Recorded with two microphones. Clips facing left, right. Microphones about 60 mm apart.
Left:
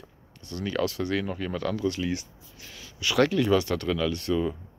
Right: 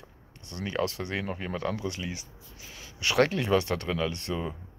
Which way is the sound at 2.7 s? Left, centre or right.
Right.